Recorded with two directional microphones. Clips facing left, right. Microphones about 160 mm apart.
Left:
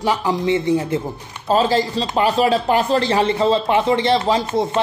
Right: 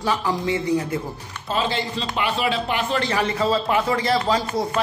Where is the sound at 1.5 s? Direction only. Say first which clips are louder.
Left 8 dB; 40° left (ahead or behind).